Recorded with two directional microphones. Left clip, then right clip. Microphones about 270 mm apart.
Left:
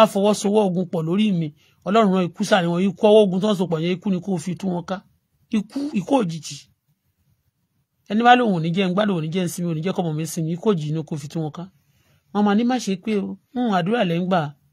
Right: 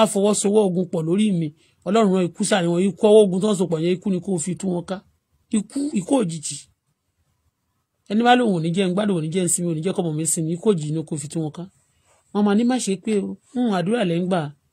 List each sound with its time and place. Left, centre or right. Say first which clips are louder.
0.0 s a man's voice: left 2 dB; left
8.1 s a man's voice: left 2 dB; left